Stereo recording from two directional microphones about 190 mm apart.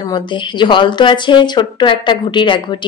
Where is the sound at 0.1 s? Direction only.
25° left (ahead or behind).